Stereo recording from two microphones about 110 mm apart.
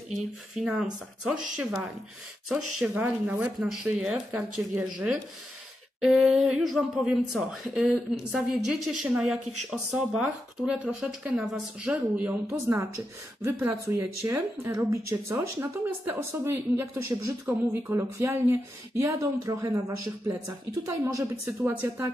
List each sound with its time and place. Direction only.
0.1 s speech: 5° right (ahead or behind)
12.4 s speech: 25° right (ahead or behind)
13.9 s speech: 30° right (ahead or behind)